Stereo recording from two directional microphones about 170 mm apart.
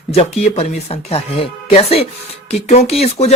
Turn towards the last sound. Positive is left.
turn(degrees=40)  # may be behind; listen again after turning